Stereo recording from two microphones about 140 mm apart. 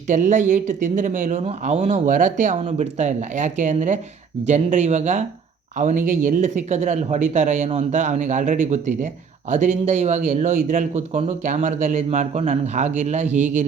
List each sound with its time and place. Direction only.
0.1 s speech: 65° right (ahead or behind)
1.4 s speech: 45° right (ahead or behind)